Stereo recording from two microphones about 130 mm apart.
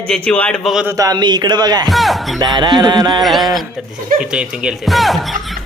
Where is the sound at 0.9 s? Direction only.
25° right (ahead or behind).